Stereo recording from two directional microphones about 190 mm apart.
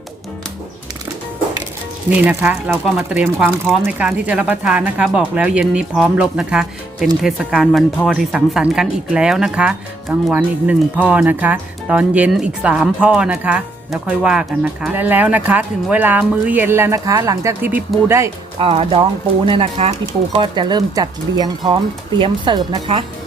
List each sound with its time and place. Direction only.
2.0 s speech: 10° right (ahead or behind)
18.6 s speech: 30° right (ahead or behind)